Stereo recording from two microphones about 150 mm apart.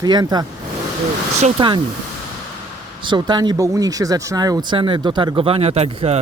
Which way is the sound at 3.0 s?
30° right (ahead or behind).